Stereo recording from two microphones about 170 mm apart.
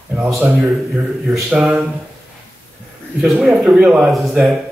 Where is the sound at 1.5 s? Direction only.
5° right (ahead or behind).